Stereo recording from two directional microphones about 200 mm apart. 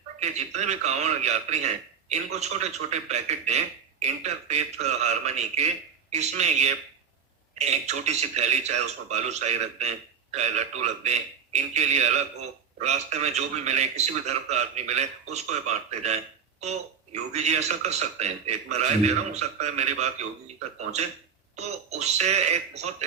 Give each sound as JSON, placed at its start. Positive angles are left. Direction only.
{"t": 0.2, "sound": "a man's voice", "side_deg": -35}
{"t": 21.5, "sound": "a man's voice", "side_deg": -35}